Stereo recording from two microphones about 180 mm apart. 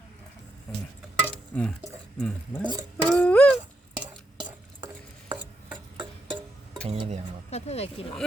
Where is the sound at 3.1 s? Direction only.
5° left (ahead or behind).